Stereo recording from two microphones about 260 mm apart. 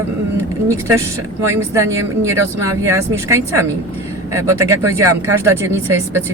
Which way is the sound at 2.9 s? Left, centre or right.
Centre.